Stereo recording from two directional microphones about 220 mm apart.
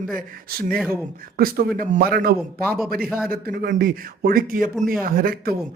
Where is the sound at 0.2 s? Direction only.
45° right (ahead or behind).